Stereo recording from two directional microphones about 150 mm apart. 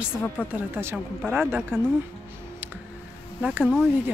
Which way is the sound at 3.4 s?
5° right (ahead or behind).